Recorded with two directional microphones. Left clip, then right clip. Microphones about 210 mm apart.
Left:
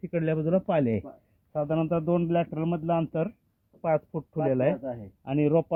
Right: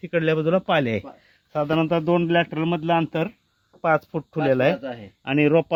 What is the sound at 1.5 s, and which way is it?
Speech, 30° right (ahead or behind).